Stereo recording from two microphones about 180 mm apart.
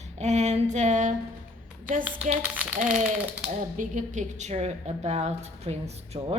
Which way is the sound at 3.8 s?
45° right (ahead or behind).